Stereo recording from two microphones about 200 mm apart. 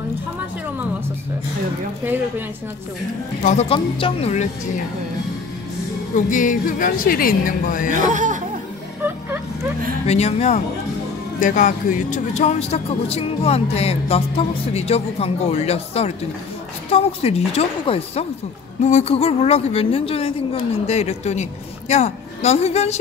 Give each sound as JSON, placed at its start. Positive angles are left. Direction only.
{"t": 3.4, "sound": "speech", "side_deg": 30}
{"t": 6.1, "sound": "a woman's voice", "side_deg": 40}
{"t": 7.9, "sound": "speech", "side_deg": -40}
{"t": 10.0, "sound": "speech", "side_deg": 30}